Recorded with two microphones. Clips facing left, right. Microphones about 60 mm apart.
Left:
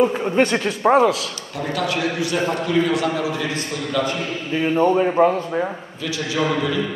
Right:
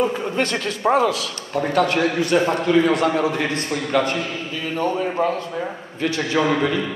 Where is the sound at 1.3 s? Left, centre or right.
Right.